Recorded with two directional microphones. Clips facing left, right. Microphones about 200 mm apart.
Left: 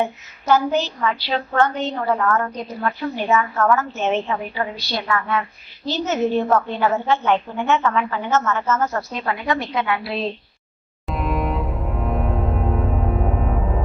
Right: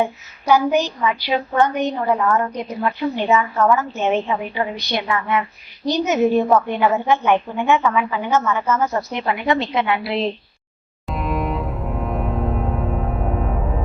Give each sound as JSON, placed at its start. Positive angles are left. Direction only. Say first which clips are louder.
{"t": 0.0, "sound": "a woman's voice", "louder": "right 2 dB", "side_deg": -10}
{"t": 11.0, "sound": "double bass", "louder": "even", "side_deg": 0}